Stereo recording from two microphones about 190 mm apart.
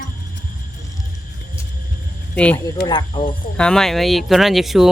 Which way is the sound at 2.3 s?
5° left (ahead or behind).